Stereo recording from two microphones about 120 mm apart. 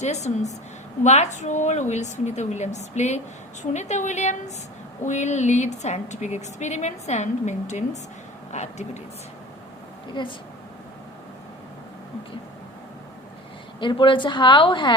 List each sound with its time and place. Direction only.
0.0 s a woman's voice: 70° left (ahead or behind)
10.2 s speech: 40° left (ahead or behind)
13.7 s a woman's voice: 45° left (ahead or behind)